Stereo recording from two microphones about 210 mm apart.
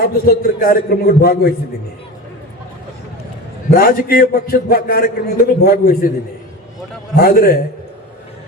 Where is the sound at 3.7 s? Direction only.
45° left (ahead or behind).